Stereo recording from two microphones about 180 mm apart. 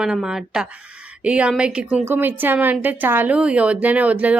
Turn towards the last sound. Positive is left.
turn(degrees=-10)  # may be behind; listen again after turning